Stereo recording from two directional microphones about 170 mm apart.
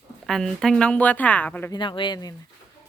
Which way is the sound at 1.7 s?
30° left (ahead or behind).